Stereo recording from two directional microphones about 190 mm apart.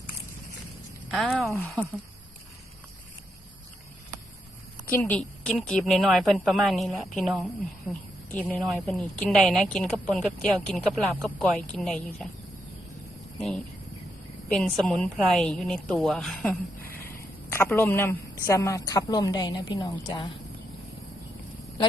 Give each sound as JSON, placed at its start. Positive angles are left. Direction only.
{"t": 1.1, "sound": "a woman's voice", "side_deg": 0}
{"t": 4.9, "sound": "a woman's voice", "side_deg": 10}
{"t": 14.6, "sound": "a woman's voice", "side_deg": 5}